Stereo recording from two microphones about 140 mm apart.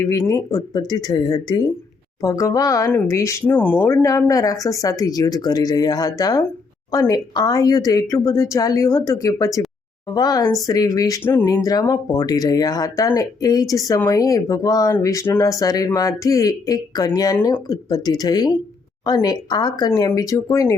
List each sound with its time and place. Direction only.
0.0 s speech: 25° left (ahead or behind)
11.2 s speech: 15° left (ahead or behind)
11.4 s speech: 25° left (ahead or behind)